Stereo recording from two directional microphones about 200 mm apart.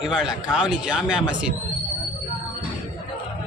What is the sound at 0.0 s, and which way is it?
A man's voice, 5° right (ahead or behind).